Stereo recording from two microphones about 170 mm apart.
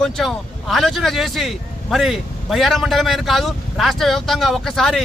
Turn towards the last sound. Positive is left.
turn(degrees=0)  # may be behind; listen again after turning